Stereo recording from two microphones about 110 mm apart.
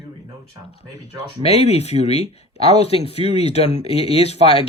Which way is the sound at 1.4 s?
65° left (ahead or behind).